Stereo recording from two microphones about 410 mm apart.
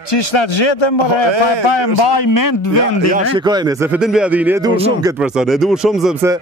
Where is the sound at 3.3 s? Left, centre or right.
Centre.